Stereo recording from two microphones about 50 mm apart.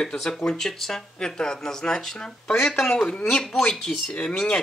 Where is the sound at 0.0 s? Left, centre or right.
Centre.